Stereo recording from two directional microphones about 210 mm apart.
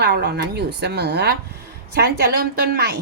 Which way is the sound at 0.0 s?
50° right (ahead or behind).